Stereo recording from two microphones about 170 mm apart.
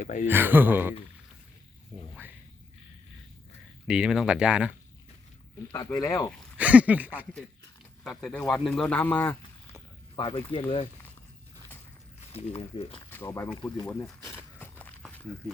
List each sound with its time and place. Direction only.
0.0 s speech: 50° left (ahead or behind)
0.3 s speech: 10° right (ahead or behind)
3.8 s a man's voice: 5° right (ahead or behind)
5.7 s speech: 25° left (ahead or behind)
6.6 s speech: 10° right (ahead or behind)
8.0 s a man's voice: 5° left (ahead or behind)
10.2 s speech: 30° left (ahead or behind)
12.3 s speech: 35° left (ahead or behind)
13.1 s speech: 10° left (ahead or behind)
13.8 s a man's voice: centre (ahead or behind)
14.3 s a sound: 10° left (ahead or behind)